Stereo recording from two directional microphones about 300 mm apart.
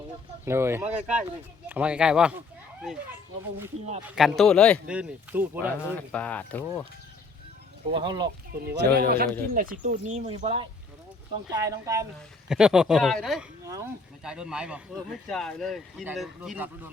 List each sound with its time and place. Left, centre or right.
0.4 s speech: centre
4.1 s speech: centre
6.0 s speech: centre
7.9 s speech: centre
8.6 s speech: right; by 16.9 s centre